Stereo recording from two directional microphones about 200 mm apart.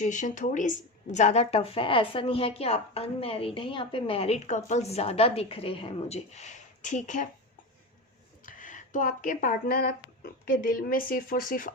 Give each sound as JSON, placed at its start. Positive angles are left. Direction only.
{"t": 0.0, "sound": "speech", "side_deg": 40}
{"t": 8.4, "sound": "speech", "side_deg": 40}